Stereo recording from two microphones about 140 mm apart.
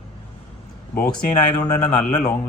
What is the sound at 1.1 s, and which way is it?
Speech, 30° left (ahead or behind).